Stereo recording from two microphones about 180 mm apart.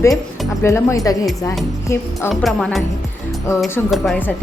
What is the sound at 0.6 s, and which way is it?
Speech, 15° left (ahead or behind).